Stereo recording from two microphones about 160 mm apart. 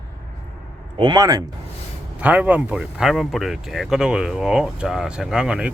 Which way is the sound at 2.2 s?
10° right (ahead or behind).